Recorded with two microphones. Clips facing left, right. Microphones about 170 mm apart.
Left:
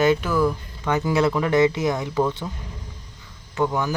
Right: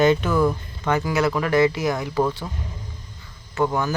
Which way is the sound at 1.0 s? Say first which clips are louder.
Left 4 dB; 25° left (ahead or behind).